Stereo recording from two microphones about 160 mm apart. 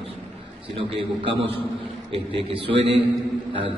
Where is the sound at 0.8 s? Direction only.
35° right (ahead or behind).